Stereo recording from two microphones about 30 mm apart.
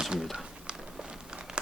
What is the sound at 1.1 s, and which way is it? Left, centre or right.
Crumpling, right.